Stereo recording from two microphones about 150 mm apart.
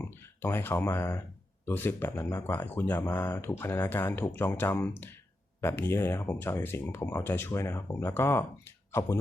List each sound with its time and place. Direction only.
0.0 s speech: 15° left (ahead or behind)